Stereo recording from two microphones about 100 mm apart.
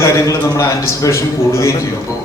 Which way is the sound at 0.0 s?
30° left (ahead or behind).